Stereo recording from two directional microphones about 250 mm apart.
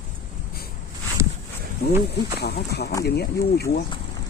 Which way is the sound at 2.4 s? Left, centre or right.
Left.